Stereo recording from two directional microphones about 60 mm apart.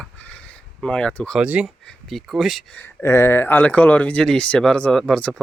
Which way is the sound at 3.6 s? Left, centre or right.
Left.